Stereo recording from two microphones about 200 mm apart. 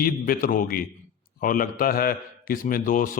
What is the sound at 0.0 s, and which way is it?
A man's voice, 45° left (ahead or behind).